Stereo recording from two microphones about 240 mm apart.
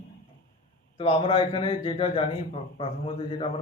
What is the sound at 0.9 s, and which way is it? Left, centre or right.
Speech, left.